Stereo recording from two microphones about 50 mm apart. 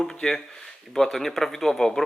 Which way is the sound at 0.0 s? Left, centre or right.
Centre.